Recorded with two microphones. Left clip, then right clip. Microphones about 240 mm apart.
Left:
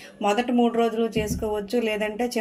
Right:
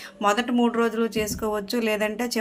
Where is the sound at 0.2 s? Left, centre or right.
Right.